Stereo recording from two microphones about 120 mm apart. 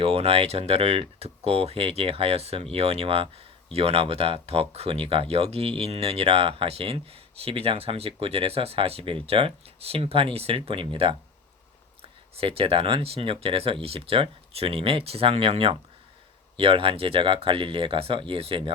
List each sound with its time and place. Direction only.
0.0 s speech: 55° right (ahead or behind)
12.4 s speech: 50° right (ahead or behind)